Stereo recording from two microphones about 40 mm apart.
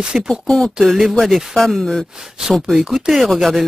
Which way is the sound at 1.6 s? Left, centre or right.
Centre.